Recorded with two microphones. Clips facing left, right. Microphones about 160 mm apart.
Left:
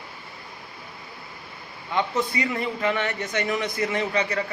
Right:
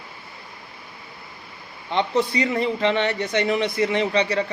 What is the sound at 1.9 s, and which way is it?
A man's voice, 25° right (ahead or behind).